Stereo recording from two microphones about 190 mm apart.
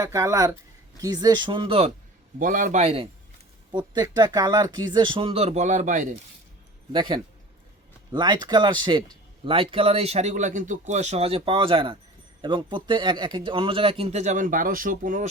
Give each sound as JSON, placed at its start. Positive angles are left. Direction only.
{"t": 0.0, "sound": "speech", "side_deg": -15}
{"t": 2.4, "sound": "speech", "side_deg": -45}
{"t": 3.7, "sound": "speech", "side_deg": -25}
{"t": 6.9, "sound": "speech", "side_deg": -25}